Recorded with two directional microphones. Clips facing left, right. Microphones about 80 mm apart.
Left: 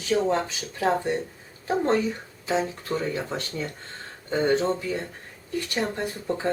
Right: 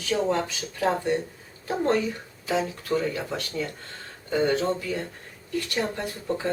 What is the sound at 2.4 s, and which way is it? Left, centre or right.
Speech, left.